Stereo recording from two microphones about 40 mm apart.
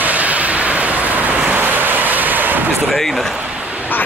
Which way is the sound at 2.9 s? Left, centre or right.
Centre.